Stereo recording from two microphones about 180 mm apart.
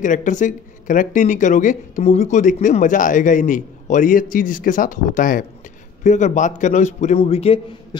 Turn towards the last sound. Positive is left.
turn(degrees=30)  # may be behind; listen again after turning